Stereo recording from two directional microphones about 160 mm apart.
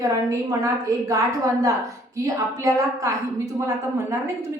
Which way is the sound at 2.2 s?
20° right (ahead or behind).